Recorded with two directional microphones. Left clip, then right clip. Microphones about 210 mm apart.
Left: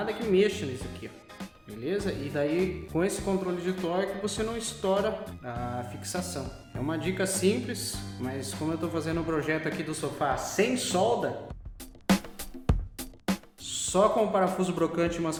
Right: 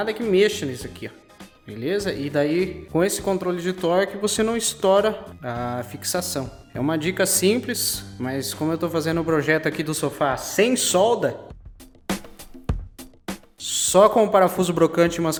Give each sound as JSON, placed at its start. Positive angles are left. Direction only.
{"t": 0.3, "sound": "speech", "side_deg": -50}
{"t": 2.5, "sound": "speech", "side_deg": 0}
{"t": 2.9, "sound": "speech", "side_deg": -50}
{"t": 12.1, "sound": "music", "side_deg": 0}
{"t": 13.6, "sound": "speech", "side_deg": -50}